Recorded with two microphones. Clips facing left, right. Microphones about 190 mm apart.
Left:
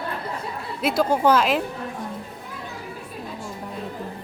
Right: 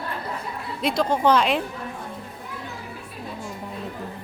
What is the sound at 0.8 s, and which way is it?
Speech, 5° left (ahead or behind).